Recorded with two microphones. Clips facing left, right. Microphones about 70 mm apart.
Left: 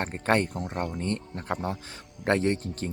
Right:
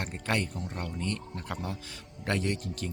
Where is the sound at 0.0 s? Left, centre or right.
Left.